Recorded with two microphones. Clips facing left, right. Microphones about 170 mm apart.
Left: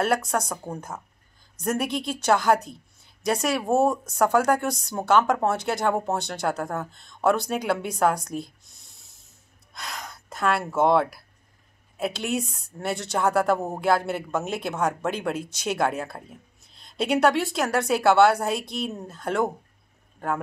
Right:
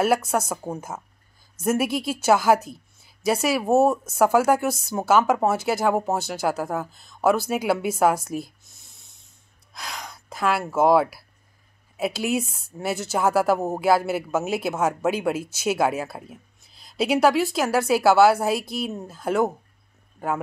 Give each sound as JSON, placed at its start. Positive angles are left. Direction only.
{"t": 0.0, "sound": "a woman's voice", "side_deg": -5}